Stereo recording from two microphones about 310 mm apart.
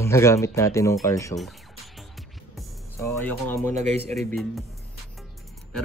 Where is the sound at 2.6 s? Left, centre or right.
Centre.